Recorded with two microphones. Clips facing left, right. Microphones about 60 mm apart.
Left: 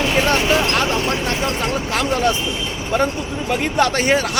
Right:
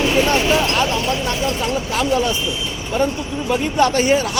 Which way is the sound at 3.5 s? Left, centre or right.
Left.